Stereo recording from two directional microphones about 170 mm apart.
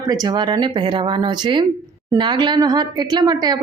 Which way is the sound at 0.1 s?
25° right (ahead or behind).